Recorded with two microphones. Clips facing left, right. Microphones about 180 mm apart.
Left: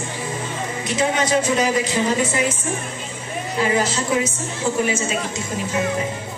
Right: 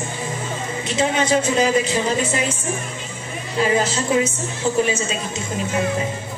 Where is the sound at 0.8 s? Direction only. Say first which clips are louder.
Even; 25° right (ahead or behind).